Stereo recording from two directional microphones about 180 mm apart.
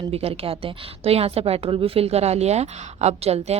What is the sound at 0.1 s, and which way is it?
A woman's voice, 35° right (ahead or behind).